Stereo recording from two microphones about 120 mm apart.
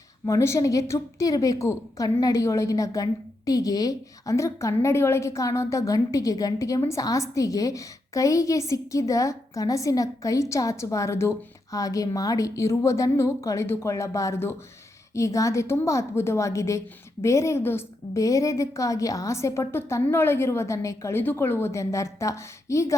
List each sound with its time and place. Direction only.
0.3 s a woman's voice: 25° left (ahead or behind)